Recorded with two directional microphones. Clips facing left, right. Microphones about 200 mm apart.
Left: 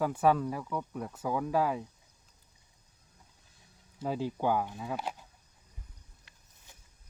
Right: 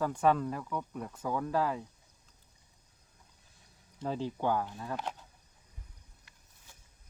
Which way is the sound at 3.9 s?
10° left (ahead or behind).